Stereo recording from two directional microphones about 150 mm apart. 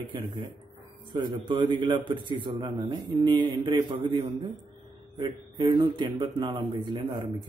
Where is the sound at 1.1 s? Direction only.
30° right (ahead or behind).